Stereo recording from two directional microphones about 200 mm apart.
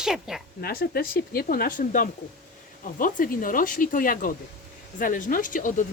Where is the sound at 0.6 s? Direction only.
50° left (ahead or behind).